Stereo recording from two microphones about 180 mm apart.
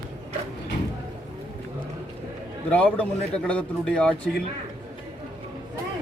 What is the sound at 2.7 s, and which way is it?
Speech, 10° left (ahead or behind).